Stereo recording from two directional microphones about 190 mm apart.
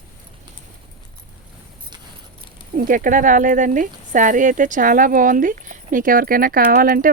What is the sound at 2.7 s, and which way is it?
Speech, 45° right (ahead or behind).